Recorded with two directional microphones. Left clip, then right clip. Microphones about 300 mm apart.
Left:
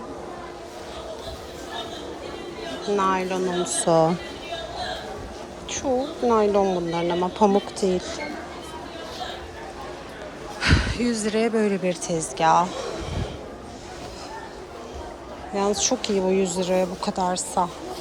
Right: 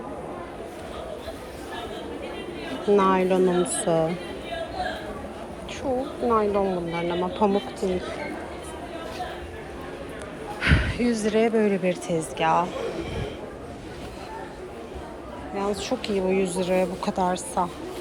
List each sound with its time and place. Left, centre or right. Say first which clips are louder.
2.9 s a woman's voice: right 3 dB; centre
6.2 s speech: left 3 dB; centre
10.6 s speech: left 1 dB; centre
15.5 s speech: left 4 dB; centre